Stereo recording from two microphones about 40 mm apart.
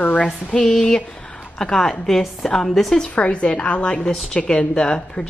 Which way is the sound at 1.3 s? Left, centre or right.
Centre.